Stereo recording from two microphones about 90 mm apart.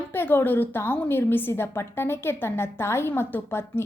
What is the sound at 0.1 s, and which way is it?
A woman's voice, 25° left (ahead or behind).